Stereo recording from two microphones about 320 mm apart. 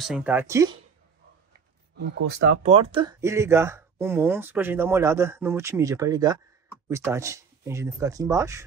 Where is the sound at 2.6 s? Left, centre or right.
Centre.